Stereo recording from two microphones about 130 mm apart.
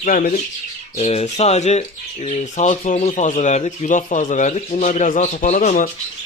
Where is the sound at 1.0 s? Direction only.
55° left (ahead or behind); by 5.9 s 75° left (ahead or behind).